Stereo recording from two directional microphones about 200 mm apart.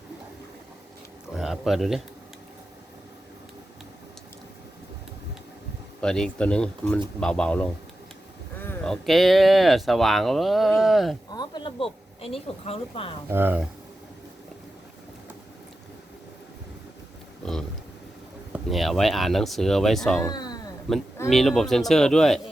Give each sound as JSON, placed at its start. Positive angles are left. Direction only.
{"t": 1.3, "sound": "a sound", "side_deg": 0}
{"t": 6.0, "sound": "speech", "side_deg": 5}
{"t": 11.3, "sound": "speech", "side_deg": 20}
{"t": 13.2, "sound": "speech", "side_deg": -10}
{"t": 17.4, "sound": "a sound", "side_deg": 0}
{"t": 18.5, "sound": "speech", "side_deg": 0}
{"t": 20.2, "sound": "speech", "side_deg": 20}
{"t": 20.9, "sound": "speech", "side_deg": 0}